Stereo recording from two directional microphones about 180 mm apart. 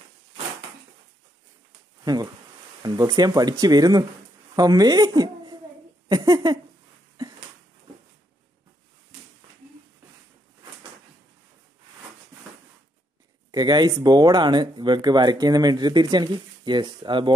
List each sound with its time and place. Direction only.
2.0 s speech: 20° right (ahead or behind)
6.0 s a sound: 20° right (ahead or behind)
13.5 s speech: 25° right (ahead or behind)